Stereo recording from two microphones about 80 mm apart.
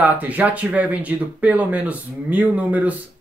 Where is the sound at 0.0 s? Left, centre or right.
Centre.